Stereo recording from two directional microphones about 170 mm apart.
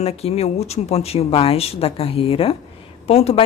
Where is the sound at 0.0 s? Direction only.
40° left (ahead or behind).